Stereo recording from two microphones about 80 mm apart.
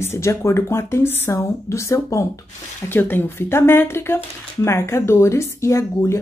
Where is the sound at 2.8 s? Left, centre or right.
Left.